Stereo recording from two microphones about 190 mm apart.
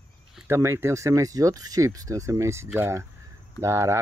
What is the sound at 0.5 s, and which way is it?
Speech, 15° right (ahead or behind).